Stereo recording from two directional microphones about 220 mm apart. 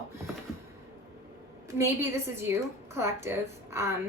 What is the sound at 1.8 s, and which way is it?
A woman's voice, 10° right (ahead or behind).